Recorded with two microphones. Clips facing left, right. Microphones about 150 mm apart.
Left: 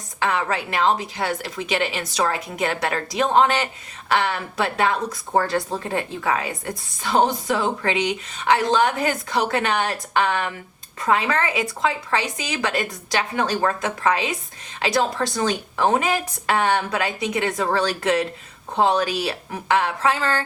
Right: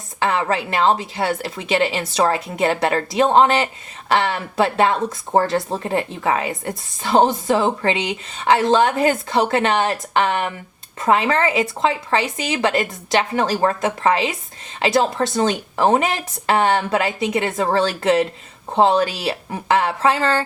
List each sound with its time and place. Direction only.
0.2 s speech: 30° right (ahead or behind)